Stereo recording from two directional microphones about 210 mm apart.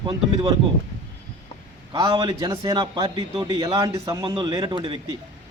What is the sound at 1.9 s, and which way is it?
A man's voice, 20° right (ahead or behind).